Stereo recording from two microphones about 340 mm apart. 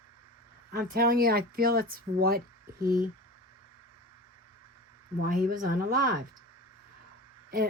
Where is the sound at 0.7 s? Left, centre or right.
Right.